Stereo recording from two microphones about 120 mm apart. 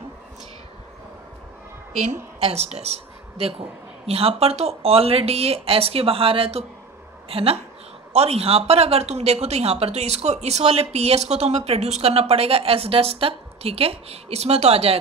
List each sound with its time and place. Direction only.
2.0 s a woman's voice: 65° right (ahead or behind)